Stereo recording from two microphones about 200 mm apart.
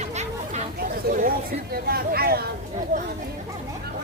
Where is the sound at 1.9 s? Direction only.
50° right (ahead or behind).